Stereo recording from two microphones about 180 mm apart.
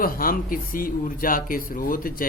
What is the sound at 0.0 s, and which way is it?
Speech, 55° left (ahead or behind).